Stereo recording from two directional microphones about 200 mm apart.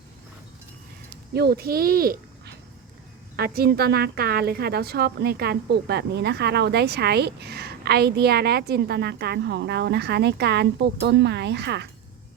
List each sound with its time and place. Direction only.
1.3 s speech: 50° right (ahead or behind)